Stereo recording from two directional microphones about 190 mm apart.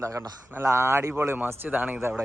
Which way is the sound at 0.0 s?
15° right (ahead or behind).